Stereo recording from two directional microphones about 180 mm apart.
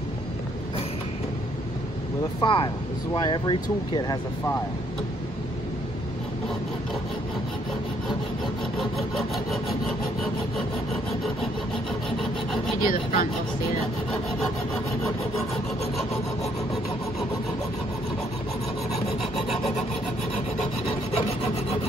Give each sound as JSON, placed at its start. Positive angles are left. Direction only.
{"t": 2.4, "sound": "speech", "side_deg": 30}
{"t": 8.7, "sound": "wood", "side_deg": 0}
{"t": 12.8, "sound": "speech", "side_deg": 50}
{"t": 18.9, "sound": "rub", "side_deg": 0}